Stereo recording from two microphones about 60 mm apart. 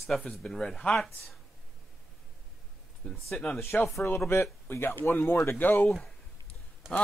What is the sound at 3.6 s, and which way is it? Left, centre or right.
Speech, left.